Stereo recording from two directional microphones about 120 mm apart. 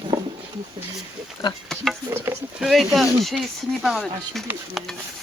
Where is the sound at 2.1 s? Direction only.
20° right (ahead or behind).